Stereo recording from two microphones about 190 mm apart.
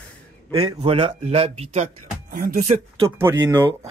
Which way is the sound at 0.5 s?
30° right (ahead or behind).